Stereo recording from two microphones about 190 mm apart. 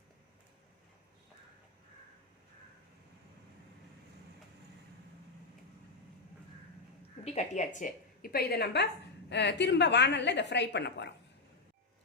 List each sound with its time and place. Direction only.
7.3 s a woman's voice: 40° left (ahead or behind); by 11.1 s 65° left (ahead or behind)